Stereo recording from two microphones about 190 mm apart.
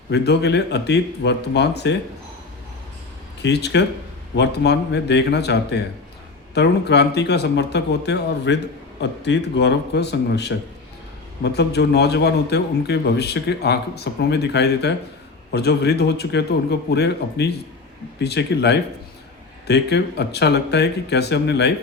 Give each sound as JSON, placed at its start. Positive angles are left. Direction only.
{"t": 0.1, "sound": "a man's voice", "side_deg": 60}
{"t": 3.4, "sound": "a man's voice", "side_deg": 65}